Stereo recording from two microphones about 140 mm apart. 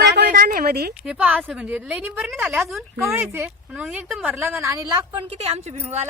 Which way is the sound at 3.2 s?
15° right (ahead or behind).